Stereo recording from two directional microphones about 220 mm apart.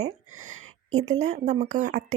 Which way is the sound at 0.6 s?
30° right (ahead or behind).